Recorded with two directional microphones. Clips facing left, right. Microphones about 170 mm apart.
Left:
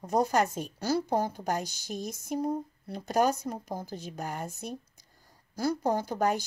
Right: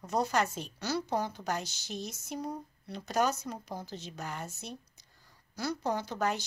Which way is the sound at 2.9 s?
50° left (ahead or behind).